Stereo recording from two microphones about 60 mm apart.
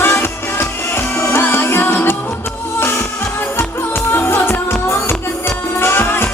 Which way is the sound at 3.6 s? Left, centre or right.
Left.